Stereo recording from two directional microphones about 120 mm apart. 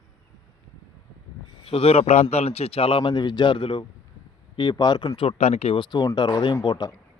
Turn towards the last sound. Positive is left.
turn(degrees=35)  # may be behind; listen again after turning